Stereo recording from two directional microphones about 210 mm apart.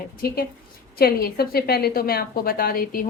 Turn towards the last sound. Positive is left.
turn(degrees=45)  # may be behind; listen again after turning